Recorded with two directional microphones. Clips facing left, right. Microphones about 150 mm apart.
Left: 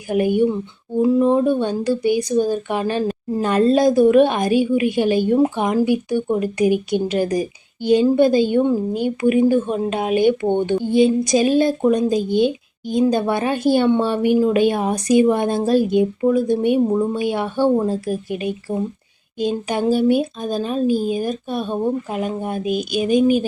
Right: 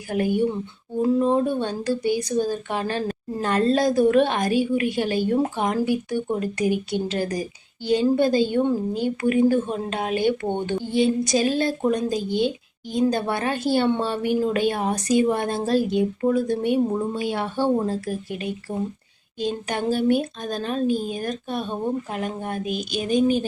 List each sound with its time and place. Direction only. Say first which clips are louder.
0.1 s a woman's voice: left 5 dB; 20° left (ahead or behind)